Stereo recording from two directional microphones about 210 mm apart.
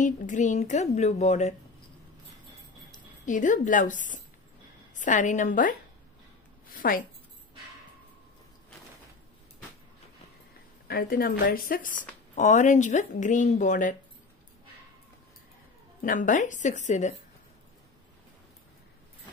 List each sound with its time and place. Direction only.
0.0 s speech: 35° left (ahead or behind)
3.3 s speech: 40° left (ahead or behind)
4.9 s a woman's voice: 35° left (ahead or behind)
10.9 s speech: 45° left (ahead or behind)
16.0 s speech: 40° left (ahead or behind)